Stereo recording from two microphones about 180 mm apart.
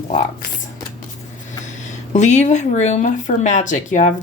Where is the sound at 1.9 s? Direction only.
40° left (ahead or behind).